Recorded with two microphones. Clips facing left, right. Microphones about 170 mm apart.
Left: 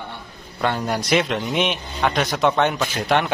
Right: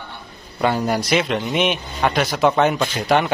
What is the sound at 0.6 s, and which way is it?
A man's voice, 5° right (ahead or behind).